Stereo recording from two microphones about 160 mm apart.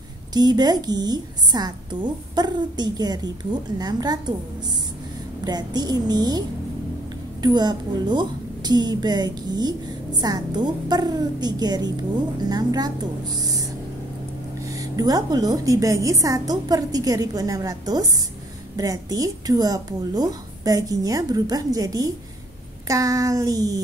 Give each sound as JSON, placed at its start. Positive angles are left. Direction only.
{"t": 0.3, "sound": "a woman's voice", "side_deg": -25}
{"t": 5.4, "sound": "a woman's voice", "side_deg": -25}
{"t": 7.4, "sound": "a woman's voice", "side_deg": -25}